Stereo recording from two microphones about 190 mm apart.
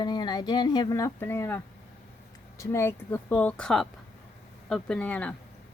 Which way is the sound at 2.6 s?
15° left (ahead or behind).